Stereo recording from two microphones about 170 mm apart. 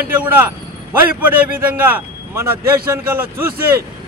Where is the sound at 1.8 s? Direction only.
10° right (ahead or behind).